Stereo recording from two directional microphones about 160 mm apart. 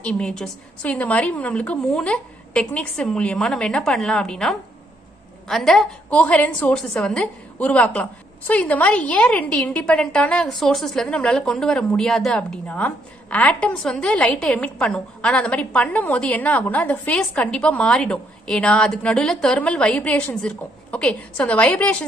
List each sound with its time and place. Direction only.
0.0 s a woman's voice: 5° left (ahead or behind)